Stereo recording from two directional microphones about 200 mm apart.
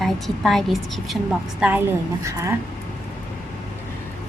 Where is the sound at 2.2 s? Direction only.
15° right (ahead or behind).